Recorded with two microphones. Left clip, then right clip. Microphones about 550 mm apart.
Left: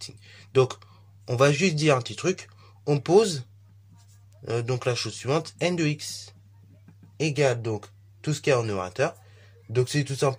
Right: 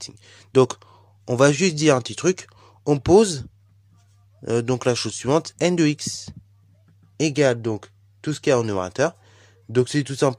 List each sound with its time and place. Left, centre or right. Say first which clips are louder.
0.0 s speech: right 3 dB; right